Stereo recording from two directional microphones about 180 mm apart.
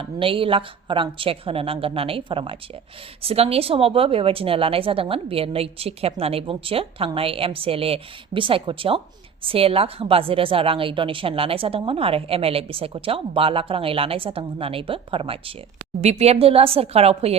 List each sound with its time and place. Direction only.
0.0 s a woman's voice: 30° right (ahead or behind)